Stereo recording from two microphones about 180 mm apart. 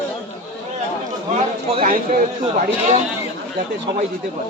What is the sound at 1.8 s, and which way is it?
Speech, 50° right (ahead or behind).